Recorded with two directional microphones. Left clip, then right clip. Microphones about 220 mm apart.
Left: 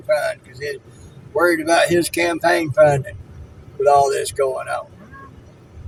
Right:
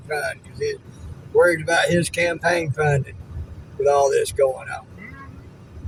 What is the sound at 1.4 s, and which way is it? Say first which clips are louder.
Speech: left 3 dB; 45° left (ahead or behind).